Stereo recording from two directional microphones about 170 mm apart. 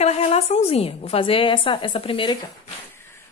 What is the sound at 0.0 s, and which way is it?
A woman's voice, 35° left (ahead or behind).